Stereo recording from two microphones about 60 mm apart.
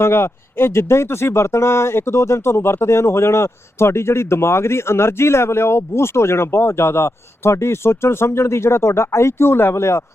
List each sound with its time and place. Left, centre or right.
0.0 s speech: left